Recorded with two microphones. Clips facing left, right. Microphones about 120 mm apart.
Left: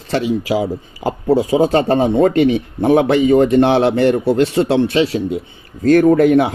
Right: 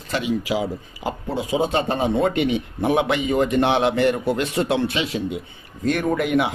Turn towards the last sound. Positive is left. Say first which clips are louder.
# left 9 dB
turn(degrees=35)  # may be behind; listen again after turning